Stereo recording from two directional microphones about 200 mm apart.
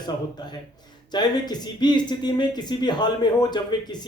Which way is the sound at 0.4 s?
20° left (ahead or behind).